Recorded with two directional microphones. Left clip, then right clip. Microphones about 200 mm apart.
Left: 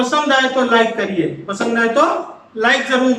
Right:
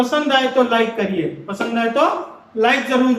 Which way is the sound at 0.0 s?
10° right (ahead or behind).